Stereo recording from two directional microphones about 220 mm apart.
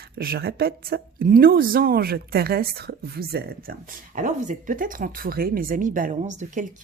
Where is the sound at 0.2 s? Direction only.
45° right (ahead or behind).